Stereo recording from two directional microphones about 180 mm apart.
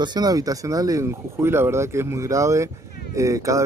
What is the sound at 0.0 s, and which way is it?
Speech, 20° right (ahead or behind).